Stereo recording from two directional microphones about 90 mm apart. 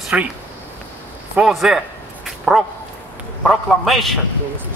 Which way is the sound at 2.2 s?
Centre (ahead or behind).